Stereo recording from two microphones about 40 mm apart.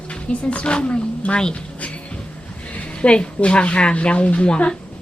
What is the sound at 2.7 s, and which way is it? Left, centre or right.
A woman's voice, left.